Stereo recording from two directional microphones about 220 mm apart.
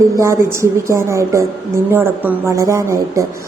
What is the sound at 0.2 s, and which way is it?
A woman's voice, 15° right (ahead or behind).